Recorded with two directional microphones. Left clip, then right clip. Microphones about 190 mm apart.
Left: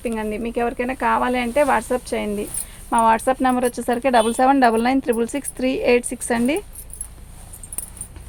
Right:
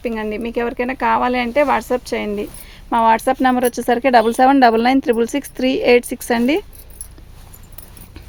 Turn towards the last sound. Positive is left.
turn(degrees=-55)  # may be behind; listen again after turning